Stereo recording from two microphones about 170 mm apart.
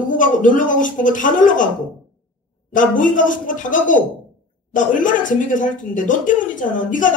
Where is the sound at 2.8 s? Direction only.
50° left (ahead or behind).